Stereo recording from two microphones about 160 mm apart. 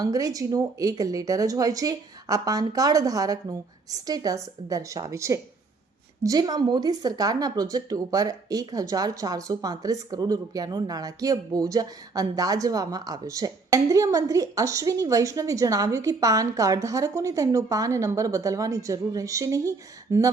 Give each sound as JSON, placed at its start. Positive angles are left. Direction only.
{"t": 0.0, "sound": "speech", "side_deg": -20}